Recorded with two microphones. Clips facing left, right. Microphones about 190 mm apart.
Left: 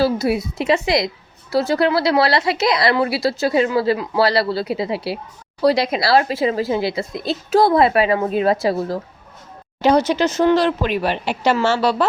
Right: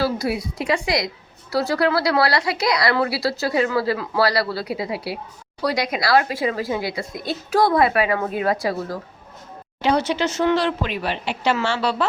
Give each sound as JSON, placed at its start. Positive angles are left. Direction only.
{"t": 0.0, "sound": "a woman's voice", "side_deg": 25}
{"t": 9.8, "sound": "a woman's voice", "side_deg": 40}